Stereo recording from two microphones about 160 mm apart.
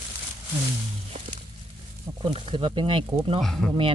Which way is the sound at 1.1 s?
45° right (ahead or behind).